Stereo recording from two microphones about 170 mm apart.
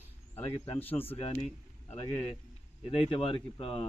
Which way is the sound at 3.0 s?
30° left (ahead or behind).